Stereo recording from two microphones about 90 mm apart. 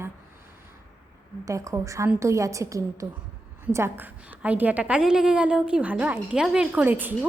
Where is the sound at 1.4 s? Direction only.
40° right (ahead or behind).